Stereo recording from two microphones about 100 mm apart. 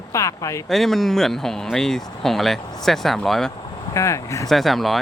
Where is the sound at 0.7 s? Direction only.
Centre (ahead or behind).